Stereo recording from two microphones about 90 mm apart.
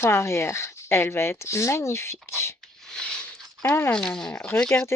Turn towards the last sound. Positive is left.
turn(degrees=10)  # may be behind; listen again after turning